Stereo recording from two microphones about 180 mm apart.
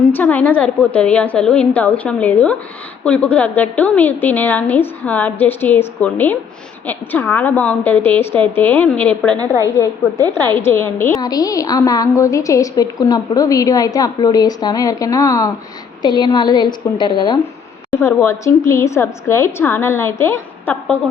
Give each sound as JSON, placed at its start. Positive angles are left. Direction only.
{"t": 0.1, "sound": "a woman's voice", "side_deg": 10}
{"t": 17.9, "sound": "a woman's voice", "side_deg": 15}